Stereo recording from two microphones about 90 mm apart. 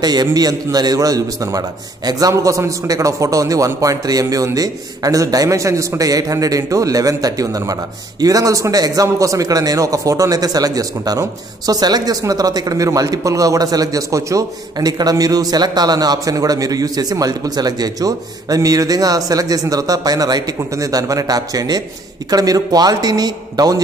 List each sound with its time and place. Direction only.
0.0 s a man's voice: 50° right (ahead or behind)